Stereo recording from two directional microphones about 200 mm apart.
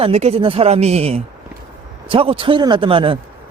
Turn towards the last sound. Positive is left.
turn(degrees=-25)  # may be behind; listen again after turning